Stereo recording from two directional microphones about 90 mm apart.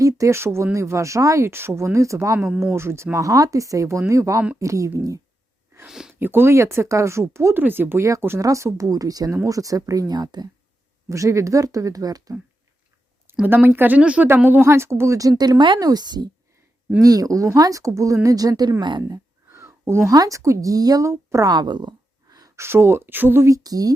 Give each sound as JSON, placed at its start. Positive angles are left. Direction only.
{"t": 0.0, "sound": "speech", "side_deg": -35}
{"t": 5.9, "sound": "a sound", "side_deg": -5}
{"t": 6.1, "sound": "speech", "side_deg": -25}
{"t": 11.1, "sound": "speech", "side_deg": -35}
{"t": 13.4, "sound": "speech", "side_deg": -20}
{"t": 15.8, "sound": "speech", "side_deg": -45}
{"t": 18.8, "sound": "speech", "side_deg": -60}
{"t": 19.0, "sound": "a sound", "side_deg": -35}
{"t": 19.9, "sound": "speech", "side_deg": -30}
{"t": 21.1, "sound": "a woman's voice", "side_deg": -30}
{"t": 21.4, "sound": "a sound", "side_deg": -50}
{"t": 22.5, "sound": "speech", "side_deg": -30}
{"t": 23.6, "sound": "speech", "side_deg": -45}